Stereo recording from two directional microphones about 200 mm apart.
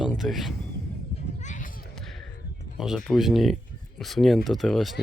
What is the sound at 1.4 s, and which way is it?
Run, 40° left (ahead or behind).